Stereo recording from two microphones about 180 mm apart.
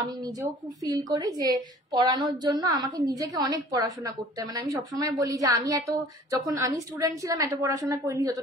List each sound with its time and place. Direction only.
0.2 s a woman's voice: 20° right (ahead or behind)